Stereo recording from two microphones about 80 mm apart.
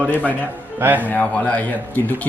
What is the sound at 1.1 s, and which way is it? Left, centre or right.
Speech, centre.